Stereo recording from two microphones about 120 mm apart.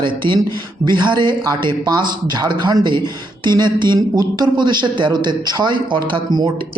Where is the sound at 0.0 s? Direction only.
40° right (ahead or behind).